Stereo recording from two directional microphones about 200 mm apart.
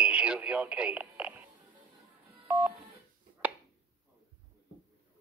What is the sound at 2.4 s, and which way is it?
Telephone dialing, 10° right (ahead or behind).